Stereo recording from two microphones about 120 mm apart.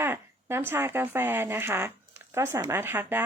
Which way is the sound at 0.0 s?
20° right (ahead or behind).